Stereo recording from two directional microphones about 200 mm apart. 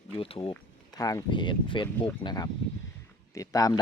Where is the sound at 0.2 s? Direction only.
30° left (ahead or behind).